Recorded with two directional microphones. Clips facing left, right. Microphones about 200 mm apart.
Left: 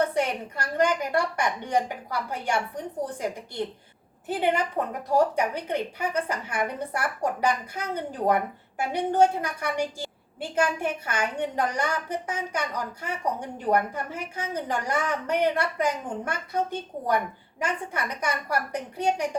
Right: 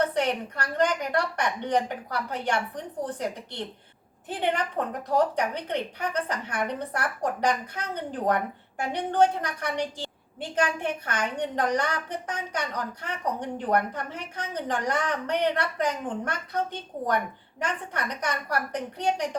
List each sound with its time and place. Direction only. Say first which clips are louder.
0.1 s a woman's voice: even; 10° left (ahead or behind)